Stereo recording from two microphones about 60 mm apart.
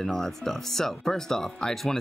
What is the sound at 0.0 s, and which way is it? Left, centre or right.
Speech, centre.